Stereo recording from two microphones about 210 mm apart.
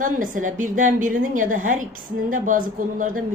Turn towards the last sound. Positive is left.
turn(degrees=-40)  # may be behind; listen again after turning